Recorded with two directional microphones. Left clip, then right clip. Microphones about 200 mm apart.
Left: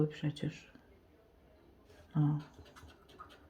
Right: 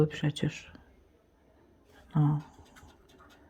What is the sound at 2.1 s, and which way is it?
Speech, 30° right (ahead or behind).